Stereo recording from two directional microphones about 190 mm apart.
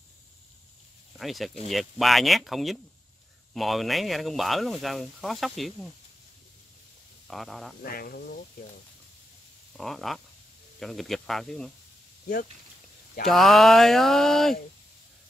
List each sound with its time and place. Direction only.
1.1 s speech: centre (ahead or behind)
7.2 s speech: centre (ahead or behind)
7.8 s speech: 50° left (ahead or behind)
9.8 s speech: centre (ahead or behind)
13.3 s speech: centre (ahead or behind)